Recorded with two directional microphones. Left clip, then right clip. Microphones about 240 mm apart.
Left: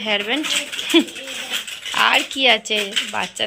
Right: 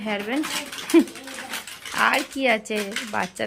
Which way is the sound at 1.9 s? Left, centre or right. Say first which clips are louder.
Left 5 dB; centre.